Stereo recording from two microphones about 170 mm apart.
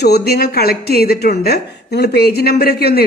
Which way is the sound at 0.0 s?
70° left (ahead or behind).